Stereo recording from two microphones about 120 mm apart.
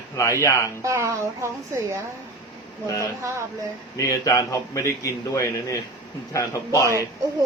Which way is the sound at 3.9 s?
25° left (ahead or behind).